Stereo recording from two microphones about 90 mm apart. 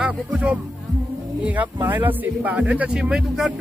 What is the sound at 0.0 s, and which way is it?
Speech, 10° right (ahead or behind).